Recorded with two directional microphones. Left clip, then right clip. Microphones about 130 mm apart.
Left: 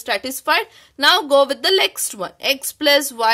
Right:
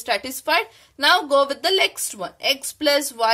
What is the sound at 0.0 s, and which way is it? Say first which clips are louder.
A woman's voice: left 2 dB; 40° left (ahead or behind).